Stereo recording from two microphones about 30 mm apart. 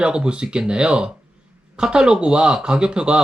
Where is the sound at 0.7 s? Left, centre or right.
Right.